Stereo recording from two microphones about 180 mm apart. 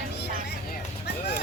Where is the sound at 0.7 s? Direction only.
70° left (ahead or behind).